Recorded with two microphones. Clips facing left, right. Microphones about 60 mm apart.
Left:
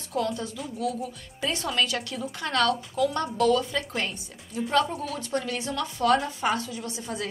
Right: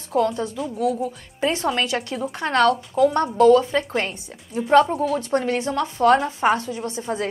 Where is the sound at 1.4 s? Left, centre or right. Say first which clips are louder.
Right 6 dB; right.